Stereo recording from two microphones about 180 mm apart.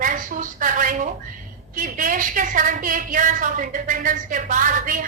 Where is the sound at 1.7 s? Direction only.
50° right (ahead or behind).